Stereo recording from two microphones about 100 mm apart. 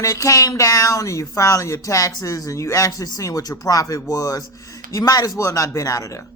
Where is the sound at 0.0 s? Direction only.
35° left (ahead or behind).